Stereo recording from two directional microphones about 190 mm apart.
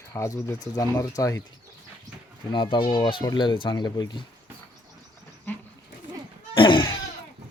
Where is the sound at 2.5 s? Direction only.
25° left (ahead or behind).